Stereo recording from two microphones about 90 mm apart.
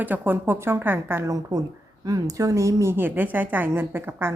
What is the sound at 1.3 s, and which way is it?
A woman's voice, 40° right (ahead or behind).